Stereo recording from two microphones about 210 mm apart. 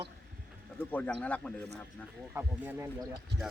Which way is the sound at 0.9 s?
5° left (ahead or behind).